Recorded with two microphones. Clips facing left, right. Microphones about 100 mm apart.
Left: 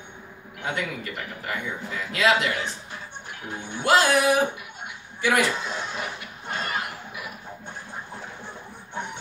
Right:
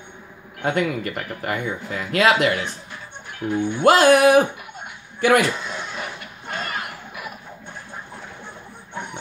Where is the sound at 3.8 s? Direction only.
55° right (ahead or behind).